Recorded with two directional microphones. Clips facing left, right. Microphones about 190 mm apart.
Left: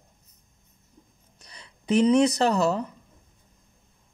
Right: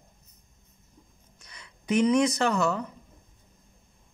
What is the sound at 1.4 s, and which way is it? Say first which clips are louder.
Speech: left 2 dB; 35° left (ahead or behind).